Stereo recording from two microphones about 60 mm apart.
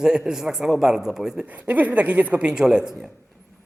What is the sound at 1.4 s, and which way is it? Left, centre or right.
A woman's voice, right.